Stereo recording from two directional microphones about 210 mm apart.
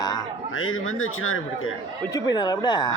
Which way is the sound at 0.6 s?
75° left (ahead or behind).